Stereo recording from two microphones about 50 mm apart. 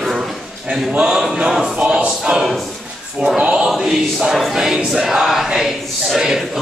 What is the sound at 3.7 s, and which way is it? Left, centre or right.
Speech, centre.